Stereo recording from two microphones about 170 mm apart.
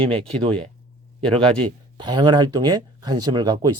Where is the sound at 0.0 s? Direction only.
35° right (ahead or behind).